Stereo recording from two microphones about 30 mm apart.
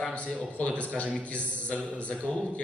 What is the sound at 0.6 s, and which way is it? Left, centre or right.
A man's voice, left.